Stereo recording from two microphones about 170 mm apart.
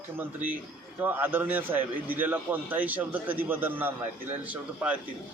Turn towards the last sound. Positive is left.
turn(degrees=-10)  # may be behind; listen again after turning